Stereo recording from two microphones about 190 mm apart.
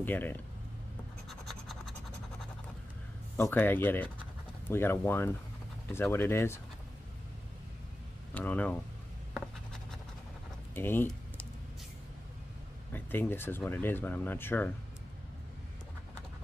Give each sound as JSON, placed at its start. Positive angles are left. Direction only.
{"t": 0.0, "sound": "speech", "side_deg": 10}
{"t": 1.3, "sound": "scratch", "side_deg": 0}
{"t": 3.3, "sound": "speech", "side_deg": 10}
{"t": 8.4, "sound": "speech", "side_deg": 10}
{"t": 9.3, "sound": "writing", "side_deg": 5}
{"t": 10.7, "sound": "a sound", "side_deg": 10}
{"t": 12.9, "sound": "speech", "side_deg": 10}